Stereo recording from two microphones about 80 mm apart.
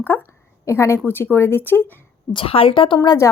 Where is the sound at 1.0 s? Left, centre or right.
Left.